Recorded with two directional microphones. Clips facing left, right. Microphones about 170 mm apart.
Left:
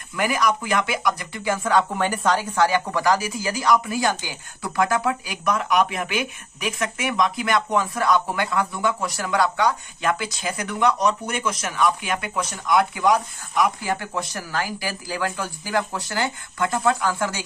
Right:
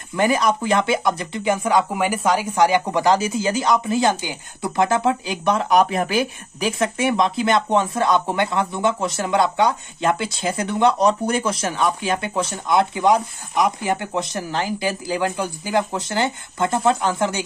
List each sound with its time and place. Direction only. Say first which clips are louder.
0.1 s speech: right 4 dB; 25° right (ahead or behind)